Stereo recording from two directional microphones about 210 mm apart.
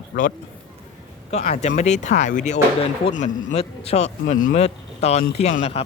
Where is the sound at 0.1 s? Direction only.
40° left (ahead or behind).